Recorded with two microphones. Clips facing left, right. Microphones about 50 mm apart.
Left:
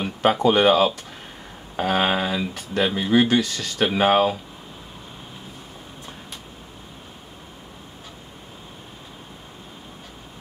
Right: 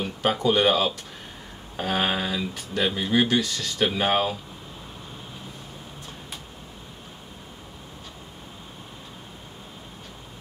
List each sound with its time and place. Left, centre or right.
0.0 s a sound: centre
0.5 s speech: centre
1.8 s speech: centre